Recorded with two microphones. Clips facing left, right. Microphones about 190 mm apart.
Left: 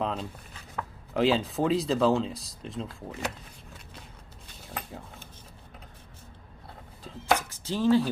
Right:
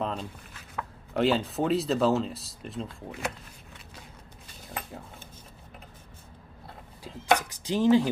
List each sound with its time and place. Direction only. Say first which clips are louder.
0.0 s speech: left 1 dB; centre (ahead or behind)
4.6 s a sound: even; centre (ahead or behind)
7.3 s speech: right 3 dB; 15° right (ahead or behind)